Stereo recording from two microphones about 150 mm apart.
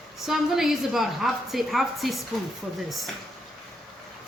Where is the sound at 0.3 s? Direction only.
Centre (ahead or behind).